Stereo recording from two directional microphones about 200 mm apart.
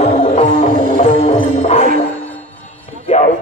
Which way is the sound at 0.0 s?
35° left (ahead or behind).